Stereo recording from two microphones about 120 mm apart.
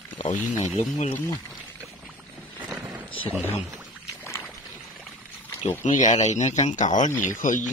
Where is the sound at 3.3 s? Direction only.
15° right (ahead or behind).